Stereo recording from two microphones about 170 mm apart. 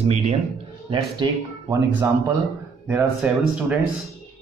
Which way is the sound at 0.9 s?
25° right (ahead or behind).